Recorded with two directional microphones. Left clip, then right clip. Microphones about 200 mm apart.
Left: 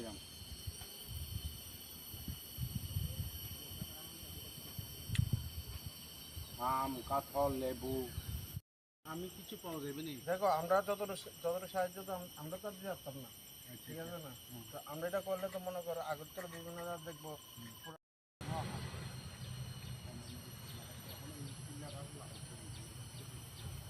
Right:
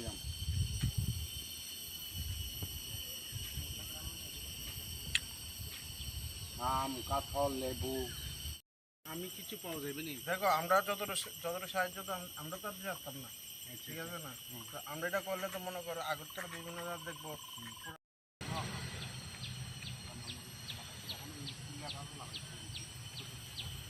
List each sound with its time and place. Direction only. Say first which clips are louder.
5.1 s a sound: right 11 dB; centre (ahead or behind)
6.6 s speech: right 1 dB; 25° right (ahead or behind)
9.0 s speech: right 2 dB; 15° left (ahead or behind)
13.9 s speech: right 2 dB; 20° left (ahead or behind)